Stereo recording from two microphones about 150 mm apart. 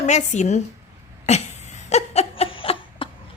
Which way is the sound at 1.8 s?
45° left (ahead or behind).